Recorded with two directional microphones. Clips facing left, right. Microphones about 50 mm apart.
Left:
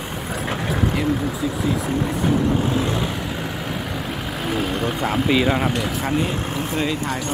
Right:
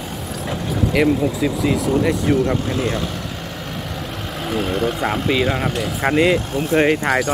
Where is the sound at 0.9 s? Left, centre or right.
Right.